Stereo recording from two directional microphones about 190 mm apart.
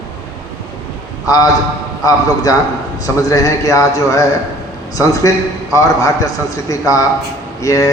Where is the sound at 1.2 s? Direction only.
20° left (ahead or behind).